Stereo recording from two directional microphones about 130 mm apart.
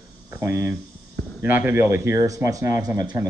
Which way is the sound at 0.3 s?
20° right (ahead or behind).